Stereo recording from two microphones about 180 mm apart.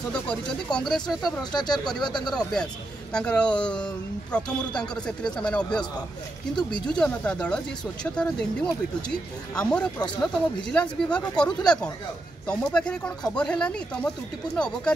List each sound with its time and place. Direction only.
0.7 s speech: 5° left (ahead or behind)
1.5 s speech: 25° left (ahead or behind)
2.2 s speech: 5° left (ahead or behind)